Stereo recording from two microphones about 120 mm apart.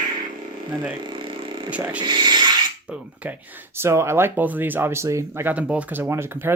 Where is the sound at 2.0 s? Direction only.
40° right (ahead or behind).